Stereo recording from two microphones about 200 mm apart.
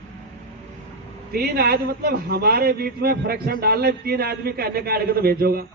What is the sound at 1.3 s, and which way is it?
A man's voice, 50° right (ahead or behind).